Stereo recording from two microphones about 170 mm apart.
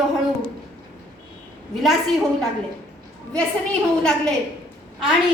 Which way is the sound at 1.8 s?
Centre (ahead or behind).